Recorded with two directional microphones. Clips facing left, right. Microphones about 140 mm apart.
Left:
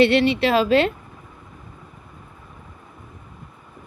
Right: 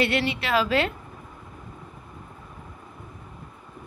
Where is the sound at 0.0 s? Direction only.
25° left (ahead or behind).